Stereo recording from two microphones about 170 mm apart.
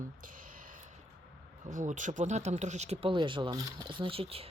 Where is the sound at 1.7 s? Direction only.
50° right (ahead or behind).